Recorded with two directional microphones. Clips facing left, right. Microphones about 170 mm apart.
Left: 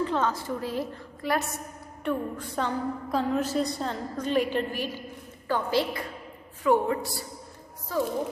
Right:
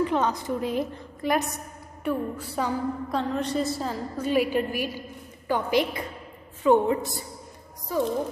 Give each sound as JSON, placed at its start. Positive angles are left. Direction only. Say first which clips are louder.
{"t": 0.0, "sound": "a woman's voice", "louder": "right 2 dB", "side_deg": -15}
{"t": 2.0, "sound": "a woman's voice", "louder": "right 1 dB", "side_deg": -5}